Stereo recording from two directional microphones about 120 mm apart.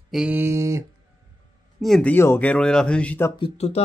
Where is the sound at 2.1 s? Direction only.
20° left (ahead or behind).